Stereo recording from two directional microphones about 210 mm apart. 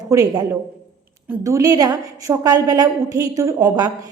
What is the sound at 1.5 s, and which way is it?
A woman's voice, 15° right (ahead or behind).